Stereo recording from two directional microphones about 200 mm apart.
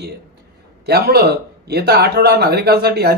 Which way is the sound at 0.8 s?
50° right (ahead or behind).